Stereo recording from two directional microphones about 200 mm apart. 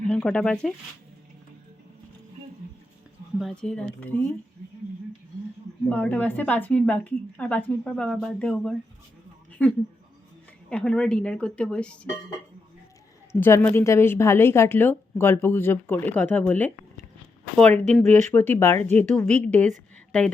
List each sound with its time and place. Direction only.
0.1 s speech: 5° left (ahead or behind)
3.3 s speech: centre (ahead or behind)
5.9 s a woman's voice: 5° left (ahead or behind)
13.3 s a woman's voice: 10° left (ahead or behind)
18.0 s speech: 35° right (ahead or behind)
18.3 s a woman's voice: 10° left (ahead or behind)